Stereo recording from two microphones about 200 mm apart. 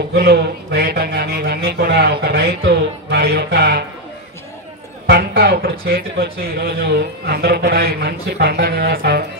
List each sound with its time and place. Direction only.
0.1 s speech: 55° right (ahead or behind)
5.0 s speech: 55° right (ahead or behind)